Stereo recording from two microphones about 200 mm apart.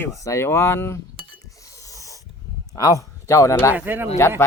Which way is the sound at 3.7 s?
10° right (ahead or behind).